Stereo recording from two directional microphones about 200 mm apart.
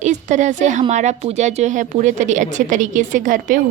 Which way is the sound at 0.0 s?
35° right (ahead or behind).